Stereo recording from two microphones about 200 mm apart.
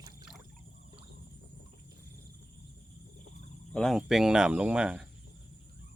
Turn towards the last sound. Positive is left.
turn(degrees=-5)  # may be behind; listen again after turning